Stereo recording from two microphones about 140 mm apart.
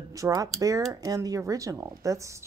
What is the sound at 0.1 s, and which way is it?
A woman's voice, 25° right (ahead or behind).